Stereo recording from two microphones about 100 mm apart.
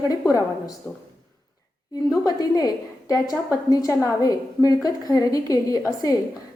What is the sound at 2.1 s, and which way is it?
A woman's voice, 40° left (ahead or behind).